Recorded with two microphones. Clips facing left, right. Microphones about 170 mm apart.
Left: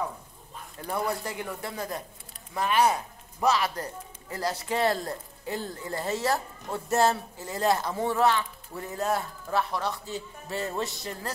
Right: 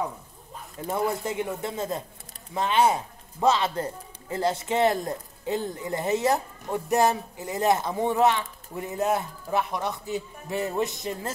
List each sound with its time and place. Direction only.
0.7 s a man's voice: 20° right (ahead or behind)